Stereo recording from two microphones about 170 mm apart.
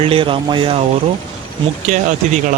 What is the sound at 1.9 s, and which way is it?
Speech, 50° right (ahead or behind).